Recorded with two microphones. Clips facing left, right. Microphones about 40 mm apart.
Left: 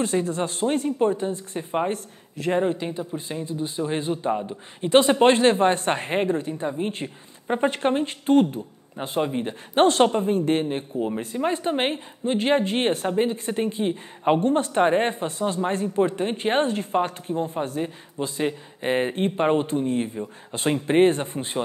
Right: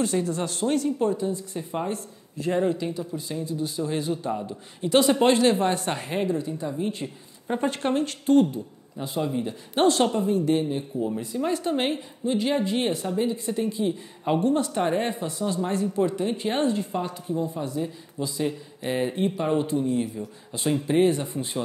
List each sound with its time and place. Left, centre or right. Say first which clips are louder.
0.0 s speech: left 1 dB; left
8.9 s speech: left 2 dB; left